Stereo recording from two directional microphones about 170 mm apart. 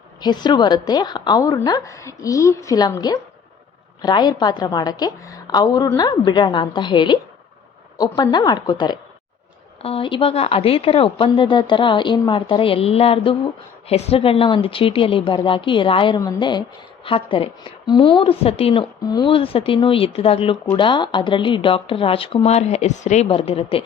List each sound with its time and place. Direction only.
0.2 s a woman's voice: 25° left (ahead or behind)